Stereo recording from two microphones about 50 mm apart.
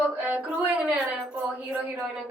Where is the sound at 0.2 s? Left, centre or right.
Right.